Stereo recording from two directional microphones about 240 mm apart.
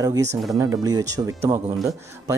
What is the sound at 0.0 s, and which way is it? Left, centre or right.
Speech, centre.